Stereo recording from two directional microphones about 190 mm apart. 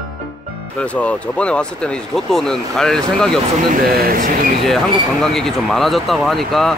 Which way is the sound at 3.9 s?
50° right (ahead or behind).